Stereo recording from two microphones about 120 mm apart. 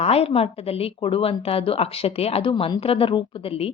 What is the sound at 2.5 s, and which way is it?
Speech, 40° left (ahead or behind).